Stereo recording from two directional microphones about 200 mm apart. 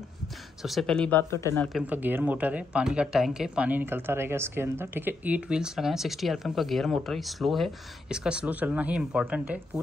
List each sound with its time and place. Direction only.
0.6 s speech: centre (ahead or behind)
1.7 s speech: 5° right (ahead or behind)